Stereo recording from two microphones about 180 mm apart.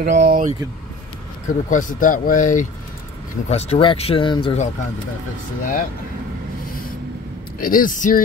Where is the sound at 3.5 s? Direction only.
35° left (ahead or behind).